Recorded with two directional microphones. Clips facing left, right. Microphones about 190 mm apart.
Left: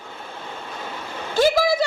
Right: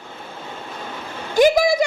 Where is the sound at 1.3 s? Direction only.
15° right (ahead or behind).